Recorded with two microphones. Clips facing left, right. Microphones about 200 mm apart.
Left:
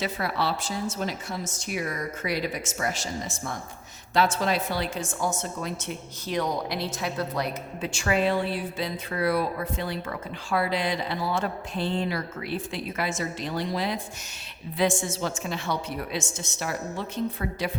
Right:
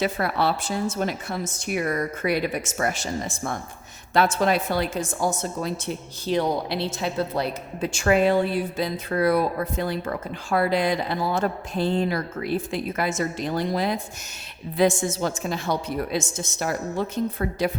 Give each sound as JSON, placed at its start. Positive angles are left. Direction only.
{"t": 0.0, "sound": "a woman's voice", "side_deg": -55}
{"t": 7.9, "sound": "a woman's voice", "side_deg": -50}